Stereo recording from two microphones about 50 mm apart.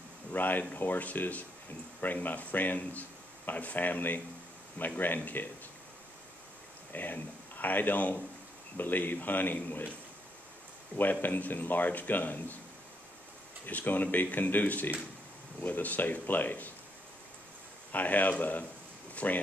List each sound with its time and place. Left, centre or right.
0.3 s speech: left
6.9 s speech: left
11.0 s speech: left
13.7 s speech: left
17.9 s speech: left